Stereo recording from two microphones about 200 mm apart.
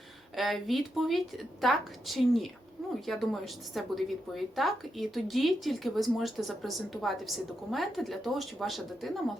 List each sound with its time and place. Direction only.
0.3 s a woman's voice: centre (ahead or behind)